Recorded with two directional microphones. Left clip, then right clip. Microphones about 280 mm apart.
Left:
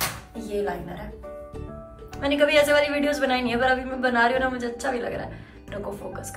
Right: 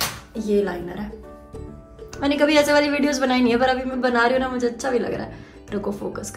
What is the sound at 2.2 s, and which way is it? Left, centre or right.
A woman's voice, centre.